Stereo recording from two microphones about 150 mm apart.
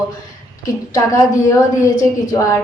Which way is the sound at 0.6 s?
20° left (ahead or behind).